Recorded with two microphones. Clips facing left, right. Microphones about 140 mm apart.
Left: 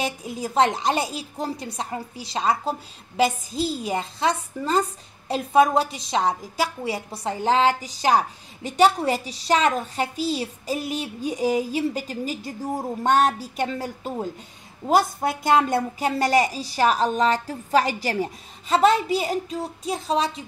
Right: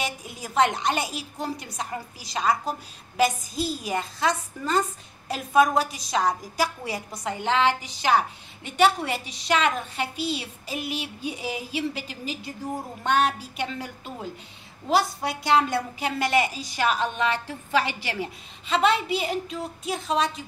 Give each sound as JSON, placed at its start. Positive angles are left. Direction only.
{"t": 0.0, "sound": "a woman's voice", "side_deg": 30}